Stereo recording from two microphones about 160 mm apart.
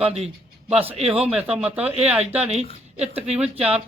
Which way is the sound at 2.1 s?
40° right (ahead or behind).